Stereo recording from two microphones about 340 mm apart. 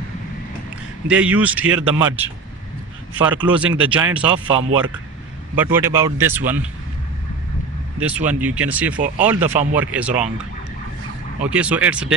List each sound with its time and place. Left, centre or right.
1.0 s speech: centre
8.0 s speech: centre
11.5 s speech: centre